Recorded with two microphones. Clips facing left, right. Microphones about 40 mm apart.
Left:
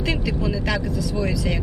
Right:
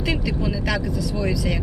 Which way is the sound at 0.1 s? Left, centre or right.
Centre.